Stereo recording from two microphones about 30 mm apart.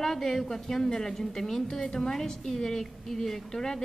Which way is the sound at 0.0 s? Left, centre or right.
Centre.